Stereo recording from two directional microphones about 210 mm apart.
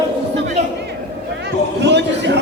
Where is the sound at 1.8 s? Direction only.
55° right (ahead or behind).